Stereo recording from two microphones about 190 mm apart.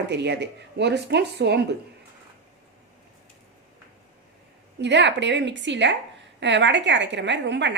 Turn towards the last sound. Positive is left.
turn(degrees=-70)  # may be behind; listen again after turning